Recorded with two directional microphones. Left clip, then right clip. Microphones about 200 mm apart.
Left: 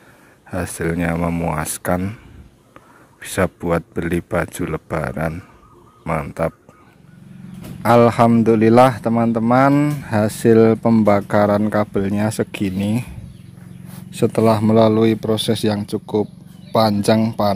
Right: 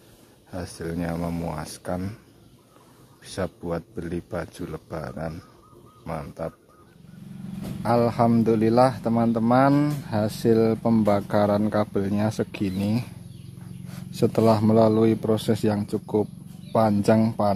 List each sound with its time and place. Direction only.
0.5 s speech: 25° left (ahead or behind)
3.2 s speech: 25° left (ahead or behind)
7.8 s speech: 20° left (ahead or behind)
14.2 s speech: 5° left (ahead or behind)